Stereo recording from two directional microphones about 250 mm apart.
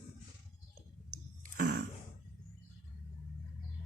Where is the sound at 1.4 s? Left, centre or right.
Right.